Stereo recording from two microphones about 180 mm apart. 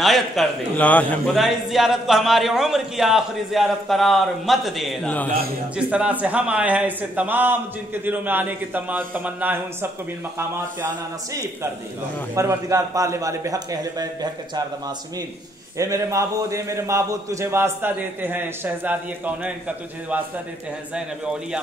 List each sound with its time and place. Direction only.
0.0 s a man's voice: centre (ahead or behind)
5.8 s a man's voice: 5° right (ahead or behind)
12.4 s a man's voice: 15° right (ahead or behind)
15.8 s a man's voice: 15° right (ahead or behind)